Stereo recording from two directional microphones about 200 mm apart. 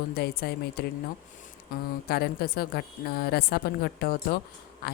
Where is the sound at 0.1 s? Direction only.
50° left (ahead or behind).